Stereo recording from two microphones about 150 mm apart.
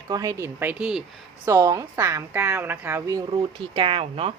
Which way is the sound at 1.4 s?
20° right (ahead or behind).